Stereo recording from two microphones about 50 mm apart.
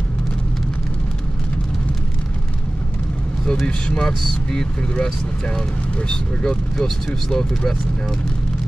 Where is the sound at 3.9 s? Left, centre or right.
Centre.